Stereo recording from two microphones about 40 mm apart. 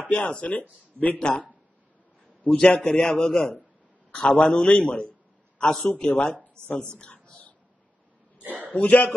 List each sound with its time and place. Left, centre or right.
0.1 s a man's voice: left
2.4 s a man's voice: centre
4.2 s a man's voice: left
7.0 s a sound: left
8.4 s a sound: right
8.7 s a man's voice: left